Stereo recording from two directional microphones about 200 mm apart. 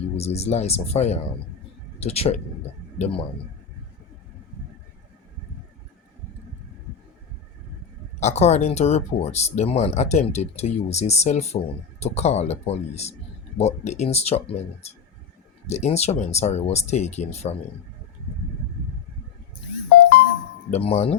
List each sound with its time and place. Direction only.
0.3 s speech: 30° left (ahead or behind)
8.2 s speech: 35° left (ahead or behind)
20.0 s music: 50° left (ahead or behind)
20.7 s speech: 30° left (ahead or behind)